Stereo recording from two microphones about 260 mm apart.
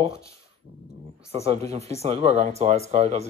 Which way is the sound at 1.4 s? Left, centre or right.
Right.